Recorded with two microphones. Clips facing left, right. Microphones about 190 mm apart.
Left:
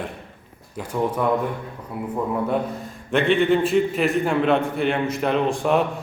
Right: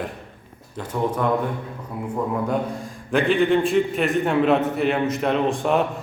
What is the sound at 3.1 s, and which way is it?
A man's voice, centre (ahead or behind).